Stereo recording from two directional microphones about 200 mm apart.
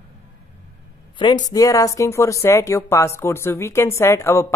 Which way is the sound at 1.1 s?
20° left (ahead or behind).